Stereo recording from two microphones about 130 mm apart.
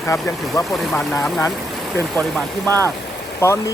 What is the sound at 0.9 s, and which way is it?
Speech, 10° left (ahead or behind).